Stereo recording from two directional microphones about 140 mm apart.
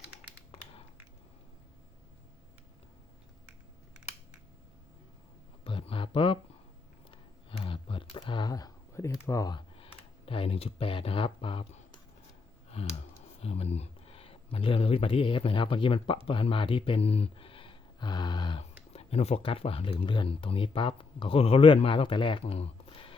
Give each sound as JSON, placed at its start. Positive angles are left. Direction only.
{"t": 0.5, "sound": "crushing", "side_deg": 45}
{"t": 5.6, "sound": "a sound", "side_deg": 40}
{"t": 9.2, "sound": "speech", "side_deg": 25}
{"t": 9.7, "sound": "speech", "side_deg": 40}
{"t": 12.8, "sound": "clicking", "side_deg": 50}
{"t": 13.4, "sound": "speech", "side_deg": 50}
{"t": 18.9, "sound": "speech", "side_deg": 45}